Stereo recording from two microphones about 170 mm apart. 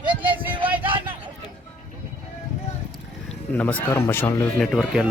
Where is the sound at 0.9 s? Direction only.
30° right (ahead or behind).